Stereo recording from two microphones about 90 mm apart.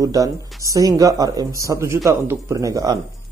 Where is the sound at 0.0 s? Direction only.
40° right (ahead or behind).